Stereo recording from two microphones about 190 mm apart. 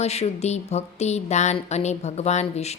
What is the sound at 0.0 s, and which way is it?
A woman's voice, 35° left (ahead or behind).